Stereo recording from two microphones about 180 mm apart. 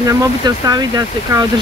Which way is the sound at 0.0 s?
20° right (ahead or behind).